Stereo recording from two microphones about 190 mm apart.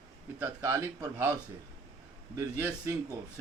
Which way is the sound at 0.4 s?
15° right (ahead or behind).